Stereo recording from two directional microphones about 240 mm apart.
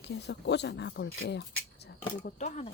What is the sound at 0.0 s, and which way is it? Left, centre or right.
Speech, left.